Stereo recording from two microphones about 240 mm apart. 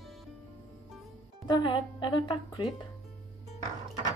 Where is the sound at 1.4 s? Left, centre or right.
Centre.